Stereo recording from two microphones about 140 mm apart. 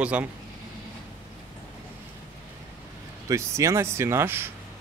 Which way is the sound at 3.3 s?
20° right (ahead or behind).